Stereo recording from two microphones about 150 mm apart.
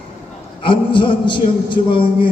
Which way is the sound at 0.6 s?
35° left (ahead or behind).